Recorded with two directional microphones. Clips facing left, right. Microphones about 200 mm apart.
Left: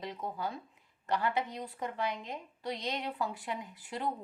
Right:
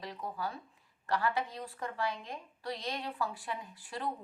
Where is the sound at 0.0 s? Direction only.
20° left (ahead or behind).